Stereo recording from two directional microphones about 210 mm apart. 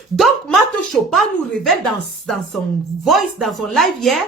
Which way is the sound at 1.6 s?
Centre (ahead or behind).